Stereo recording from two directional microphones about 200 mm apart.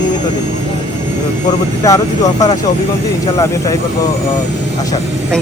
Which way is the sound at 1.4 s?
15° left (ahead or behind).